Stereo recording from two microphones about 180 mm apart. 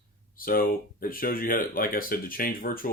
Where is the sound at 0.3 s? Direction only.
55° left (ahead or behind).